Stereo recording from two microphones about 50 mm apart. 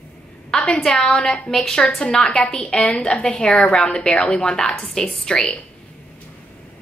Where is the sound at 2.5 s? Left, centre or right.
Centre.